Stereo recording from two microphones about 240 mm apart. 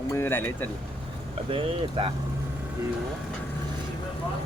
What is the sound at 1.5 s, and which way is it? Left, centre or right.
Speech, right.